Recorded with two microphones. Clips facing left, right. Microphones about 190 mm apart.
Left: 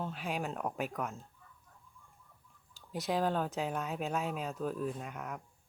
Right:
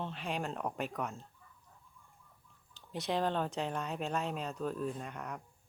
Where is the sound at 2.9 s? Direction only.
5° left (ahead or behind).